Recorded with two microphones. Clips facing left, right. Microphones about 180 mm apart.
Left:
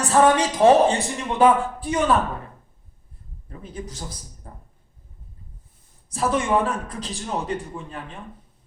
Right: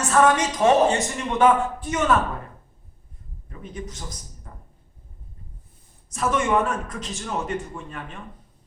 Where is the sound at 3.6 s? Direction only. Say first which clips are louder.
Even; 35° left (ahead or behind).